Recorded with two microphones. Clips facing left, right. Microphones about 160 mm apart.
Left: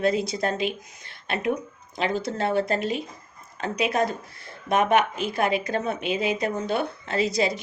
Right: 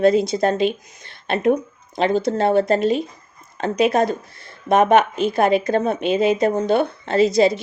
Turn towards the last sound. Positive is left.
turn(degrees=-30)  # may be behind; listen again after turning